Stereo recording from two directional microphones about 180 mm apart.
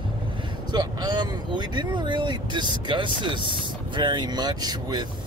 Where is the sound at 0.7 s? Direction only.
25° right (ahead or behind).